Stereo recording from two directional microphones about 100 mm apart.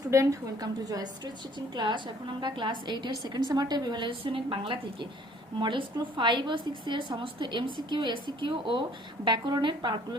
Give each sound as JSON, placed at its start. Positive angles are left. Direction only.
{"t": 0.1, "sound": "a woman's voice", "side_deg": -30}